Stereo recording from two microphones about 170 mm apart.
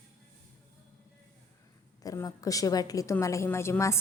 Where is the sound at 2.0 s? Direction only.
20° left (ahead or behind).